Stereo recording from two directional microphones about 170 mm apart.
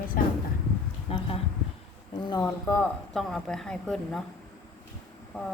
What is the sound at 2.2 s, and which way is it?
Speech, 25° left (ahead or behind).